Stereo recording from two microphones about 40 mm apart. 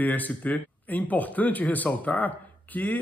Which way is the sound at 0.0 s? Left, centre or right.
Left.